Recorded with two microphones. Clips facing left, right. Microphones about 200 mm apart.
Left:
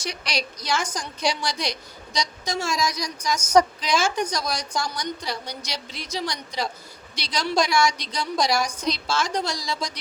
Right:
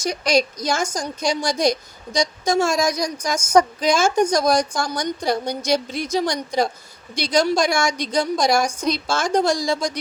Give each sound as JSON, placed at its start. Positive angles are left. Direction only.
{"t": 0.0, "sound": "a woman's voice", "side_deg": -45}